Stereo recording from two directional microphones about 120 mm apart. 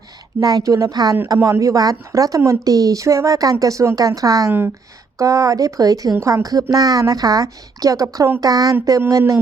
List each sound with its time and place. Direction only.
0.3 s a woman's voice: 30° right (ahead or behind)